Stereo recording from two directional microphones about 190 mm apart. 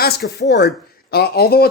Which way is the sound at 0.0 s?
55° left (ahead or behind).